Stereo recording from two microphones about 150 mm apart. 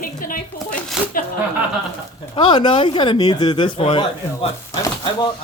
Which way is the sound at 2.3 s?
30° left (ahead or behind).